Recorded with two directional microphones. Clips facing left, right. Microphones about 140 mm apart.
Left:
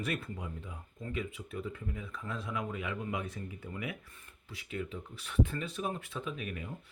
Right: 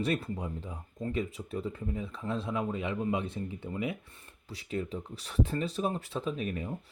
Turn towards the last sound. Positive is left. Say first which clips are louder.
# right 6 dB
turn(degrees=-35)  # may be behind; listen again after turning